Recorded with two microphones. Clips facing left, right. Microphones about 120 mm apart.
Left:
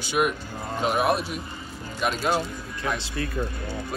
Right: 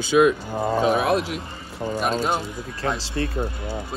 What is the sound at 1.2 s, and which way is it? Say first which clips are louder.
Speech: right 3 dB; 90° right.